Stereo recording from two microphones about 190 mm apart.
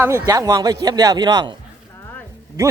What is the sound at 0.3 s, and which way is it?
Speech, 20° right (ahead or behind).